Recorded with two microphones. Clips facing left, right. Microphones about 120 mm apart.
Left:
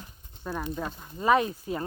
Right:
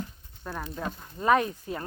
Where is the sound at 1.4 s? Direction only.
20° left (ahead or behind).